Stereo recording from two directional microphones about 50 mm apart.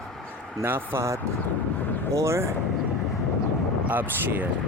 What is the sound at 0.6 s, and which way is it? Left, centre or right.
Speech, right.